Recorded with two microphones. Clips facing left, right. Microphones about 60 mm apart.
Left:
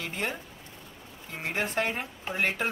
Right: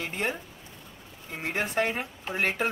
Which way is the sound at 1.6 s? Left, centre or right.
Centre.